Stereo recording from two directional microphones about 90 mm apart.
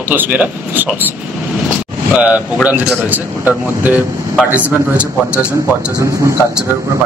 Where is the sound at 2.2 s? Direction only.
15° right (ahead or behind).